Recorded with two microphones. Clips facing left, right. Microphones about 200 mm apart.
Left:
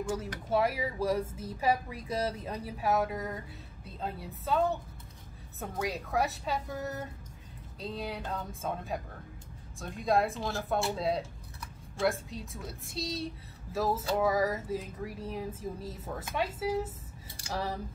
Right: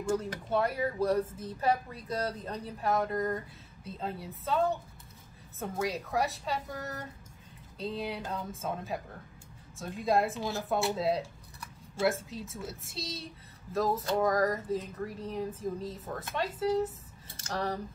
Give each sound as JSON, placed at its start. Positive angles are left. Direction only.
{"t": 0.1, "sound": "speech", "side_deg": 5}
{"t": 5.6, "sound": "speech", "side_deg": 0}